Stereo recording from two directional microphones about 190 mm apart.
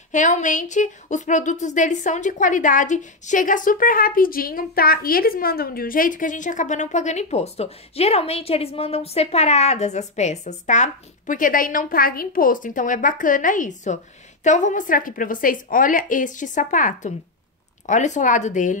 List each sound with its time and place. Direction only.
0.1 s a woman's voice: 40° left (ahead or behind)